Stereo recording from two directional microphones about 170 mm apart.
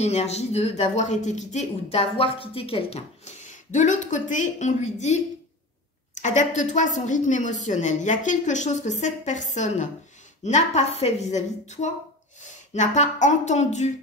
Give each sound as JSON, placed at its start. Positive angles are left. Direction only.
{"t": 0.0, "sound": "speech", "side_deg": 40}